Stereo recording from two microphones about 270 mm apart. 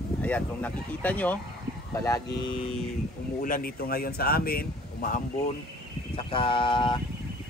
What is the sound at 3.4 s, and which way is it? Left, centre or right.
Speech, left.